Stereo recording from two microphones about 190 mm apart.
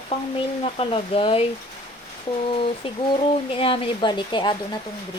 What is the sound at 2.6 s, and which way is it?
Speech, 30° left (ahead or behind).